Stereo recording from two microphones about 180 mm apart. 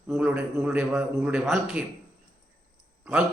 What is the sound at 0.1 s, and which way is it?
A man's voice, 5° right (ahead or behind).